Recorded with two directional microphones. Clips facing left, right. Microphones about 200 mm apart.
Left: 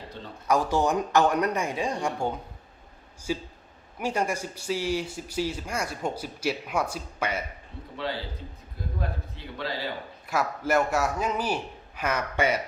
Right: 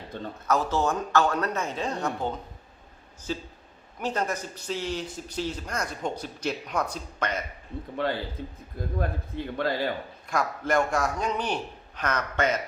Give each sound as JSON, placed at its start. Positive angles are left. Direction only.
{"t": 0.4, "sound": "speech", "side_deg": 15}
{"t": 7.7, "sound": "a man's voice", "side_deg": -50}
{"t": 9.0, "sound": "a man's voice", "side_deg": -50}
{"t": 10.2, "sound": "speech", "side_deg": 5}